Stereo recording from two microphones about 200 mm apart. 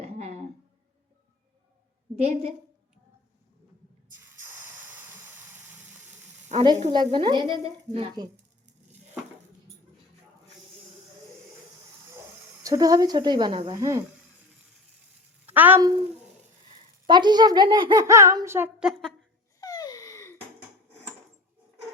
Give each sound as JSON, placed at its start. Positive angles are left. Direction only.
{"t": 0.0, "sound": "a sound", "side_deg": -30}
{"t": 2.1, "sound": "a woman's voice", "side_deg": -35}
{"t": 4.1, "sound": "spray", "side_deg": -10}
{"t": 6.5, "sound": "a child's voice", "side_deg": -30}
{"t": 12.6, "sound": "a child's voice", "side_deg": -20}
{"t": 15.4, "sound": "speech", "side_deg": -10}
{"t": 17.1, "sound": "a child's voice", "side_deg": -20}
{"t": 19.5, "sound": "a sound", "side_deg": 20}